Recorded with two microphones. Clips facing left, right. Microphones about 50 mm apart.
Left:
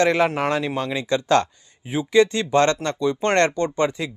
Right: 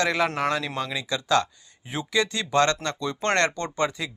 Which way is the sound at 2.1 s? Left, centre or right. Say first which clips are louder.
Left 8 dB; left.